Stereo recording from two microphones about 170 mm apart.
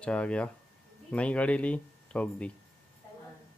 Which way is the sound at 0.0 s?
5° left (ahead or behind).